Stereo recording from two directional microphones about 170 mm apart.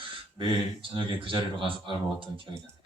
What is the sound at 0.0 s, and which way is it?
Speech, 30° right (ahead or behind).